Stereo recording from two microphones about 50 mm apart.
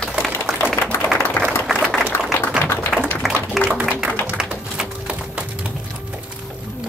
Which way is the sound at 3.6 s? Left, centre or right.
Centre.